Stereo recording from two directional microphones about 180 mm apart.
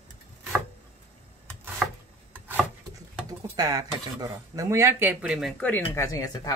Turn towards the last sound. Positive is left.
turn(degrees=20)  # may be behind; listen again after turning